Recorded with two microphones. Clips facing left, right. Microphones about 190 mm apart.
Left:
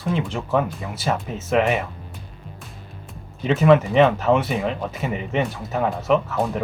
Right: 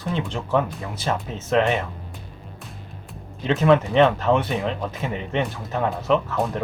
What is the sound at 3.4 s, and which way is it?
Speech, 5° left (ahead or behind).